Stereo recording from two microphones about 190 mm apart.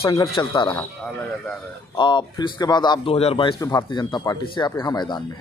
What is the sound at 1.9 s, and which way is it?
A man's voice, 25° left (ahead or behind).